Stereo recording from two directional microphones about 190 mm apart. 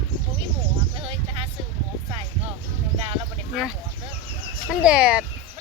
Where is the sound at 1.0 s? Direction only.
30° right (ahead or behind).